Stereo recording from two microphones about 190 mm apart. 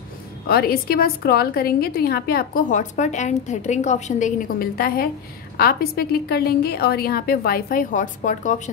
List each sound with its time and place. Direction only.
0.5 s a woman's voice: 55° left (ahead or behind)